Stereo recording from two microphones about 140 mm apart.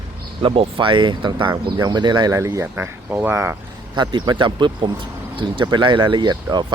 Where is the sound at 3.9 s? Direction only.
30° right (ahead or behind).